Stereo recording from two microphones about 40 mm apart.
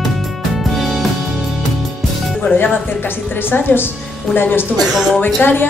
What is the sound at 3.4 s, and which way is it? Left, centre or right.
A woman's voice, left.